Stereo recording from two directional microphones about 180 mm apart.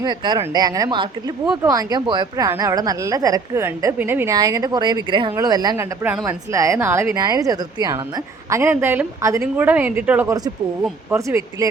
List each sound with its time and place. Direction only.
0.0 s a woman's voice: 25° right (ahead or behind)